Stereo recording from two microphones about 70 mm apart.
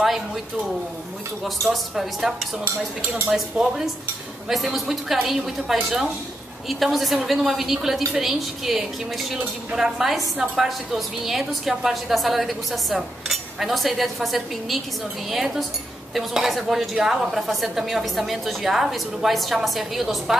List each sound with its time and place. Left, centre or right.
1.4 s a woman's voice: centre
3.3 s cutlery: centre
4.5 s a woman's voice: centre
15.3 s cutlery: centre
16.2 s a woman's voice: centre